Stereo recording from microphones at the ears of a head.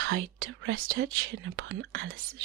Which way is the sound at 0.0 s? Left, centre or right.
Right.